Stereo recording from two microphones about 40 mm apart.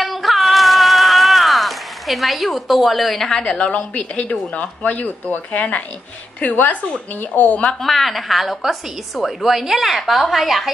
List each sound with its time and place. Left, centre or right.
0.0 s a sound: centre
3.2 s a woman's voice: centre
3.7 s speech: left
7.8 s a woman's voice: centre